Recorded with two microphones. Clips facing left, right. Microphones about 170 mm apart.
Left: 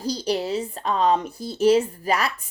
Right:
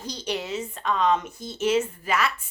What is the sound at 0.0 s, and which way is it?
Speech, 35° left (ahead or behind).